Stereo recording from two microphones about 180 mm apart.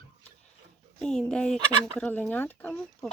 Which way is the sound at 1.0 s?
5° left (ahead or behind).